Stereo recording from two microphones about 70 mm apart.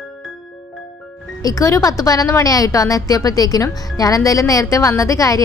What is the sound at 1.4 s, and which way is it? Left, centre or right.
A woman's voice, left.